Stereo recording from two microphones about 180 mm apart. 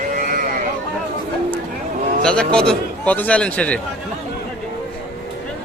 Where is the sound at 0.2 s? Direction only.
50° right (ahead or behind).